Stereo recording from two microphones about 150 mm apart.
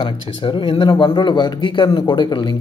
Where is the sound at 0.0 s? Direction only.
35° left (ahead or behind).